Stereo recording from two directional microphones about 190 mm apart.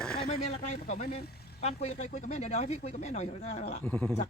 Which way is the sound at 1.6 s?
35° left (ahead or behind).